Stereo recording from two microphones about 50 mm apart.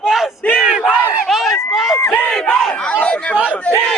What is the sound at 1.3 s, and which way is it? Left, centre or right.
Run, centre.